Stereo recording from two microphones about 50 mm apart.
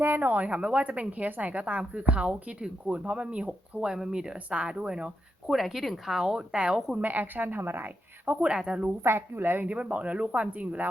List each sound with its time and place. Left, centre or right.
0.0 s a woman's voice: right; by 5.1 s centre
5.5 s speech: centre
7.0 s a woman's voice: right
8.4 s a woman's voice: right
9.0 s a woman's voice: right
9.6 s a woman's voice: right